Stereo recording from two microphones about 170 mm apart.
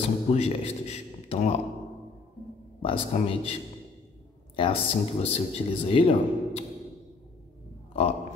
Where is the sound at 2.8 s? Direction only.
35° left (ahead or behind).